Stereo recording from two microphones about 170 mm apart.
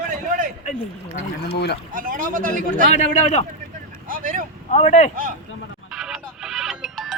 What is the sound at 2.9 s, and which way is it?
Speech, 45° left (ahead or behind).